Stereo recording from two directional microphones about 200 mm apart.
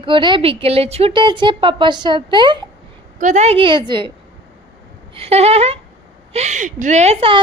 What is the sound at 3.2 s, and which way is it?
Speech, 35° right (ahead or behind).